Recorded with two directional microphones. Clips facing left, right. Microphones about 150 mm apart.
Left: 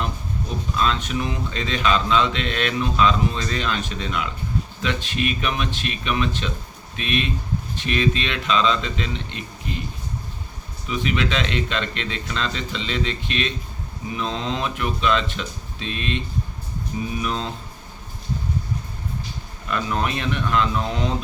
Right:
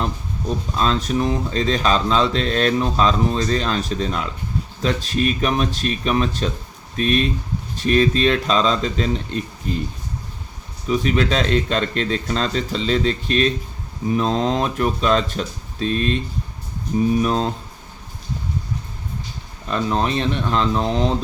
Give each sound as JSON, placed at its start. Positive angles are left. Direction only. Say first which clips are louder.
{"t": 0.8, "sound": "speech", "louder": "right 3 dB", "side_deg": -35}
{"t": 10.8, "sound": "speech", "louder": "right 5 dB", "side_deg": -40}
{"t": 19.6, "sound": "speech", "louder": "right 4 dB", "side_deg": -30}